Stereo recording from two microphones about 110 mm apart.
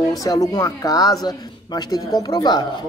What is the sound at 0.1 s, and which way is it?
Speech, 30° left (ahead or behind).